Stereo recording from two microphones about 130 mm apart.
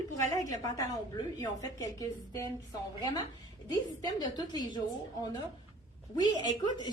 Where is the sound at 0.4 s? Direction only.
25° left (ahead or behind).